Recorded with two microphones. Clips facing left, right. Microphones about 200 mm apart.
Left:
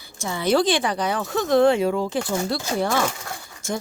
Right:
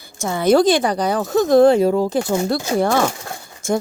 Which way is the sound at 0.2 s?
45° right (ahead or behind).